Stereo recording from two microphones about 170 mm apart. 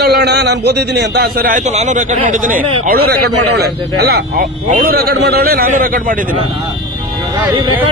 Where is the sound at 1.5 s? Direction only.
45° right (ahead or behind).